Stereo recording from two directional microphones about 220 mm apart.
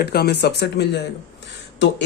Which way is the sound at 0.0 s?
45° left (ahead or behind).